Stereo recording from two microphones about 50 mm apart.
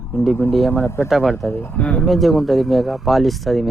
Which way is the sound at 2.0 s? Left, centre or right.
Centre.